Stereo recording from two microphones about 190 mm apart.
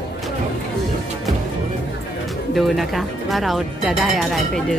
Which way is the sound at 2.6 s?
Centre (ahead or behind).